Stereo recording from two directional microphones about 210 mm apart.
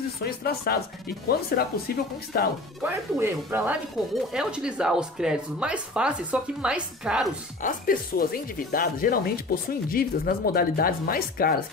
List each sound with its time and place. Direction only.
0.2 s speech: 45° left (ahead or behind)
2.8 s speech: 10° right (ahead or behind)
7.6 s speech: 40° left (ahead or behind)